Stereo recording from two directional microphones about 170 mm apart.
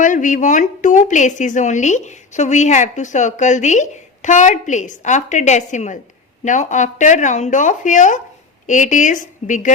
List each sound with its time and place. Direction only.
0.0 s a woman's voice: 50° left (ahead or behind)